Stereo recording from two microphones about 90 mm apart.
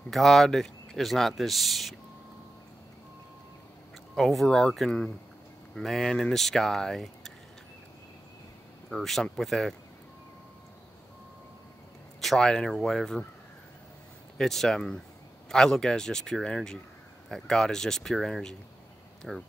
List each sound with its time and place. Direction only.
0.1 s speech: 5° left (ahead or behind)
4.1 s speech: centre (ahead or behind)
8.9 s speech: 5° left (ahead or behind)
12.2 s speech: 5° left (ahead or behind)
14.4 s speech: 5° left (ahead or behind)